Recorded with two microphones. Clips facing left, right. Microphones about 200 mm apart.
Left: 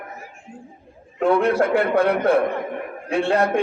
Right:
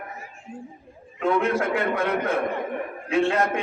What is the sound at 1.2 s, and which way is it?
A man's voice, 35° left (ahead or behind).